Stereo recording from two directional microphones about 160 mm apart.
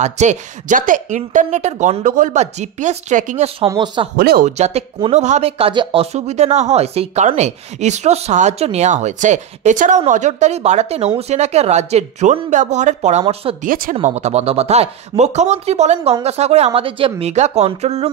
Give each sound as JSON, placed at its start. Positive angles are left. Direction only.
{"t": 0.0, "sound": "speech", "side_deg": -45}
{"t": 3.6, "sound": "speech", "side_deg": -25}
{"t": 4.2, "sound": "speech", "side_deg": -75}
{"t": 4.5, "sound": "speech", "side_deg": -45}
{"t": 13.7, "sound": "speech", "side_deg": -60}
{"t": 14.0, "sound": "speech", "side_deg": -45}